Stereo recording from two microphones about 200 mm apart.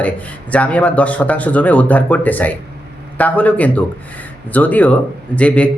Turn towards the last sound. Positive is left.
turn(degrees=5)  # may be behind; listen again after turning